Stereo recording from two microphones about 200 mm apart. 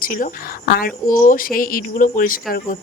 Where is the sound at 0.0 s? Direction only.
45° left (ahead or behind).